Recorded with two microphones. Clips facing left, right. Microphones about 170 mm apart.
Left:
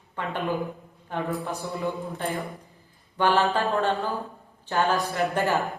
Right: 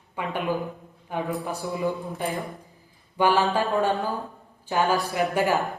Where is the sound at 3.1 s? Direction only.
10° right (ahead or behind).